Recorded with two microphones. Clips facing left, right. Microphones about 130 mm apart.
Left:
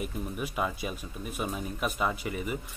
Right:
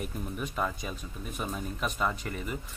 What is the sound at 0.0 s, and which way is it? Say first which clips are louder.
Speech: left 1 dB; 10° left (ahead or behind).